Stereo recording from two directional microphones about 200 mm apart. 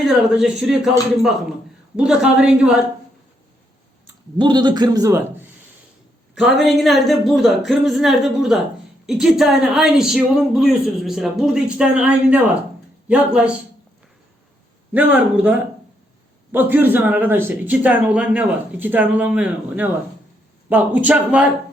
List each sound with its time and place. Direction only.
0.0 s speech: centre (ahead or behind)
2.0 s speech: 5° right (ahead or behind)
4.4 s a man's voice: 20° right (ahead or behind)
6.3 s speech: centre (ahead or behind)
14.9 s speech: 5° right (ahead or behind)